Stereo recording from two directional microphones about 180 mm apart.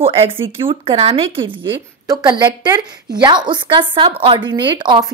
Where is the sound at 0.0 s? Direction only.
30° right (ahead or behind).